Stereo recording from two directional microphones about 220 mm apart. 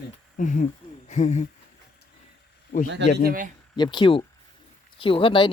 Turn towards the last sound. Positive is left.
turn(degrees=20)  # may be behind; listen again after turning